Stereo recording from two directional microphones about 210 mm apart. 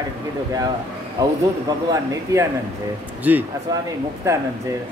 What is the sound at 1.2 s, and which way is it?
Speech, 20° right (ahead or behind).